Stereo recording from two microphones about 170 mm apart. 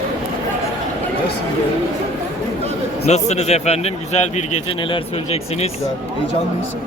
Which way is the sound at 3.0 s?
40° left (ahead or behind).